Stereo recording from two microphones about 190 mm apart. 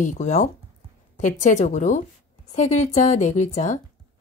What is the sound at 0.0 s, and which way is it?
A woman's voice, 40° left (ahead or behind).